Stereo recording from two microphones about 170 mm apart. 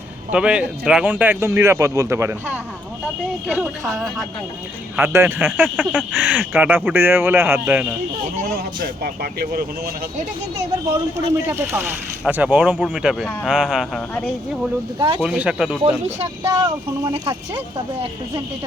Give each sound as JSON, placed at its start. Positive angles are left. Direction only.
{"t": 0.3, "sound": "speech", "side_deg": -5}
{"t": 3.9, "sound": "speech", "side_deg": 0}
{"t": 4.9, "sound": "speech", "side_deg": -10}
{"t": 8.4, "sound": "speech", "side_deg": -60}
{"t": 11.3, "sound": "speech", "side_deg": -15}
{"t": 14.9, "sound": "speech", "side_deg": -30}
{"t": 15.2, "sound": "speech", "side_deg": -5}
{"t": 15.8, "sound": "speech", "side_deg": -40}
{"t": 16.5, "sound": "speech", "side_deg": -20}